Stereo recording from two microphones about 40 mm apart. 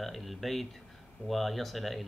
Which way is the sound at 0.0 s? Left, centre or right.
Centre.